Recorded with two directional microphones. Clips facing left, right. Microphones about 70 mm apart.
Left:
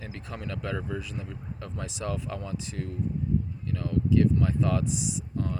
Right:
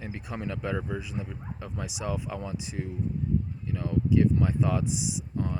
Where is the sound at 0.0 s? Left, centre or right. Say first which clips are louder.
Right 3 dB; centre.